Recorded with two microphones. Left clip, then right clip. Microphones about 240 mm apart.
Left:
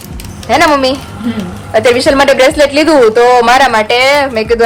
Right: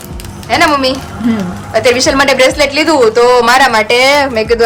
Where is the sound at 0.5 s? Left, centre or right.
Centre.